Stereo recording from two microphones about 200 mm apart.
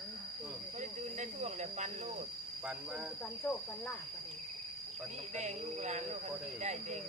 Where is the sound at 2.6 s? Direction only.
10° right (ahead or behind).